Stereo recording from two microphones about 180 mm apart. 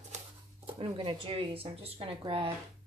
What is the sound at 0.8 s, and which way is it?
Speech, 30° right (ahead or behind).